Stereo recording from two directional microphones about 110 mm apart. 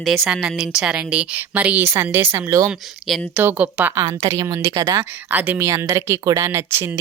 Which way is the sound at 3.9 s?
30° right (ahead or behind).